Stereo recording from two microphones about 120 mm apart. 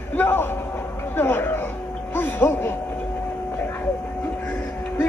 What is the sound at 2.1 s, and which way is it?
Music, 15° left (ahead or behind).